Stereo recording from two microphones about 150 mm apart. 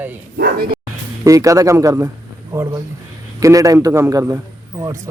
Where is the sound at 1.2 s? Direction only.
20° right (ahead or behind).